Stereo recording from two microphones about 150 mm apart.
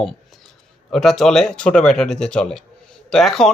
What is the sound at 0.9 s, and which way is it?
Speech, centre (ahead or behind).